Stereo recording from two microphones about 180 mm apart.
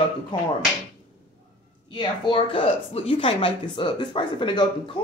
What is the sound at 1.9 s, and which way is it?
A woman's voice, 25° left (ahead or behind).